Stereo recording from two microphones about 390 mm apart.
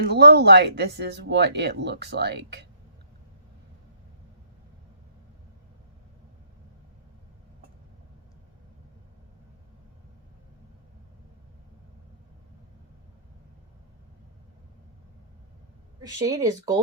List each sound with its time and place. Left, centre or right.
0.0 s speech: right
16.1 s speech: centre